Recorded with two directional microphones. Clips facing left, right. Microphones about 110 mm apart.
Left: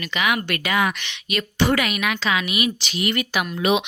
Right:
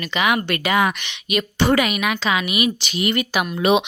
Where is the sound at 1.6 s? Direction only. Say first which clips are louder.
Right 2 dB; 25° right (ahead or behind).